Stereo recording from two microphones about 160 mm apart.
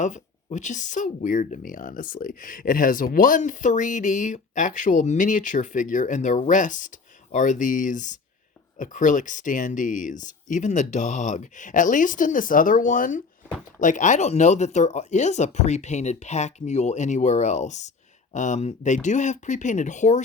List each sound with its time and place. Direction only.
0.0 s speech: 50° left (ahead or behind)